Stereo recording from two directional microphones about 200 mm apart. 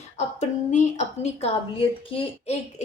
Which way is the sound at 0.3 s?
35° left (ahead or behind).